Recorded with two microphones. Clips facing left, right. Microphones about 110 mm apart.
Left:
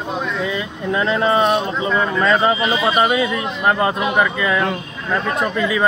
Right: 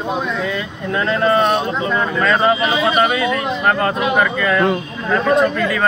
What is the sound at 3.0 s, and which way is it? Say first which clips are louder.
Speech: right 1 dB; 20° left (ahead or behind).